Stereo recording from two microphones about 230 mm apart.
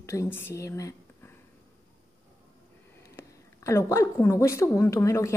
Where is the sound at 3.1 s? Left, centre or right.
Centre.